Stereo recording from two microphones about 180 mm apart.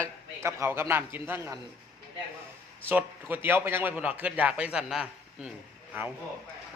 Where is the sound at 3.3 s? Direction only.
10° right (ahead or behind).